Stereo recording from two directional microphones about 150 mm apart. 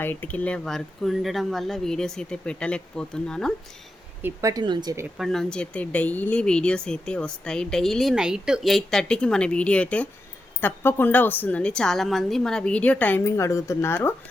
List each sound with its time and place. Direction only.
0.0 s speech: 10° left (ahead or behind)
4.2 s speech: 20° right (ahead or behind)
5.1 s a woman's voice: centre (ahead or behind)